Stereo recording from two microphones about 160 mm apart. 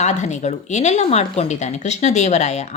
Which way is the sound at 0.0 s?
45° left (ahead or behind).